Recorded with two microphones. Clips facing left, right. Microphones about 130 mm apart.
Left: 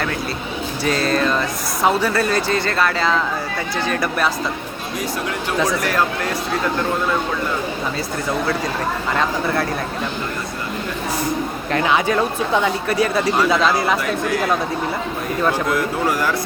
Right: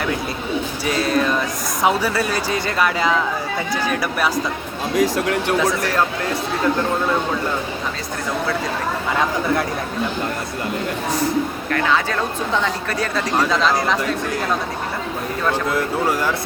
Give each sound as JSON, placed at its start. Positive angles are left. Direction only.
{"t": 0.9, "sound": "speech", "side_deg": -10}
{"t": 4.9, "sound": "speech", "side_deg": -90}
{"t": 11.7, "sound": "speech", "side_deg": 15}
{"t": 15.7, "sound": "speech", "side_deg": -25}